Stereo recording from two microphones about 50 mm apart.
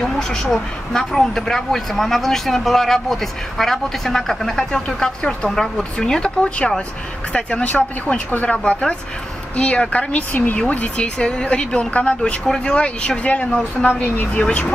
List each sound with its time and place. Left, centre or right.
0.0 s speech: centre
4.8 s speech: centre; by 10.6 s left
10.6 s speech: left